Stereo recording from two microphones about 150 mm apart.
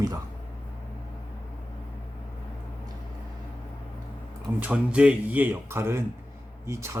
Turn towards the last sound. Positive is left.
turn(degrees=-20)  # may be behind; listen again after turning